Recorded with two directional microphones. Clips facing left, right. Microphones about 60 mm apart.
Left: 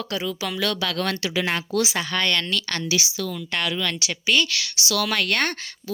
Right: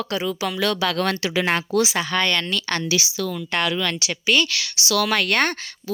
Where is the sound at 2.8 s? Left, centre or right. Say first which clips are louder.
Right 2 dB; right.